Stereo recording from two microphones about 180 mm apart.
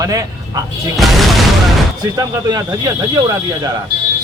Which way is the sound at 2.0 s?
20° right (ahead or behind).